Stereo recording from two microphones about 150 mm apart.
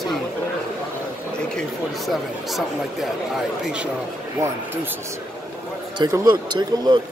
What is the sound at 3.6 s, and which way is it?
Speech, 5° right (ahead or behind).